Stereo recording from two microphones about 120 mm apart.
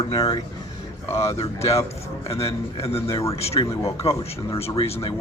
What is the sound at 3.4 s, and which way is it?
Speech, 60° left (ahead or behind).